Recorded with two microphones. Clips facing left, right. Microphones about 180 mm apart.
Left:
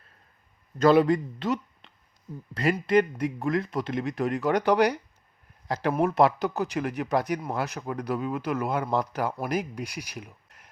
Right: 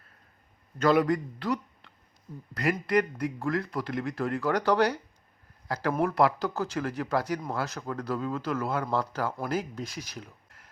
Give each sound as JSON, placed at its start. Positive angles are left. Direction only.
{"t": 0.8, "sound": "a man's voice", "side_deg": 30}